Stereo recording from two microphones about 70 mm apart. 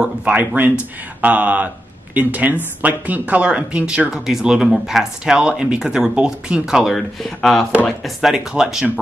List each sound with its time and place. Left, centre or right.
0.0 s speech: centre
6.9 s speech: centre